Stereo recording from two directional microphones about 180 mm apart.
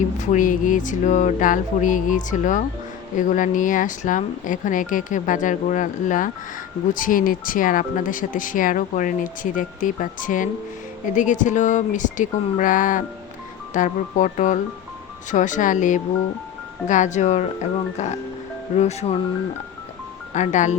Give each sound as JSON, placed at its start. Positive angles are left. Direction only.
{"t": 0.2, "sound": "speech", "side_deg": 45}
{"t": 20.3, "sound": "speech", "side_deg": 40}